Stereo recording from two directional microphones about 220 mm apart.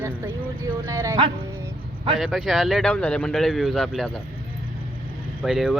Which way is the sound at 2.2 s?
Centre (ahead or behind).